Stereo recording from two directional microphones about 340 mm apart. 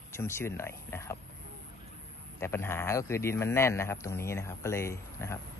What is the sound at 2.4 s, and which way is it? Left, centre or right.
Speech, centre.